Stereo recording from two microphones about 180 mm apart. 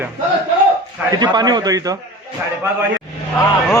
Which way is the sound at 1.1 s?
25° right (ahead or behind).